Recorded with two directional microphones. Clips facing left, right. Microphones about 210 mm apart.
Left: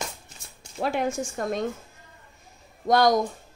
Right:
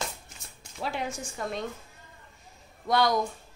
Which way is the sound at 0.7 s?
50° left (ahead or behind).